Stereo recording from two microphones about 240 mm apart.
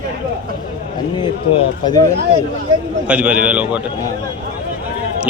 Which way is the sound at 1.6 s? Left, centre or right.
Centre.